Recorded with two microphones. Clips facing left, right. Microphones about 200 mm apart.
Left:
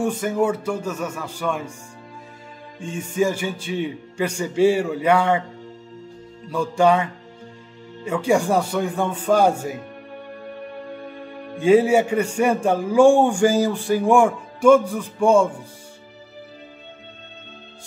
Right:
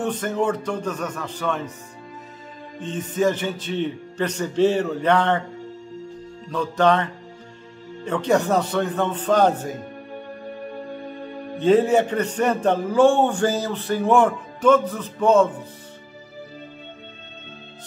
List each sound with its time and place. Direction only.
0.0 s a man's voice: 10° left (ahead or behind)
2.8 s a man's voice: 10° left (ahead or behind)
6.5 s a man's voice: 10° left (ahead or behind)
11.6 s a man's voice: 10° left (ahead or behind)